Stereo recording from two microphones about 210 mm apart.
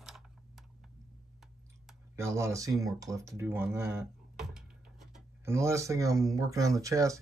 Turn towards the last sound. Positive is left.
turn(degrees=-15)  # may be behind; listen again after turning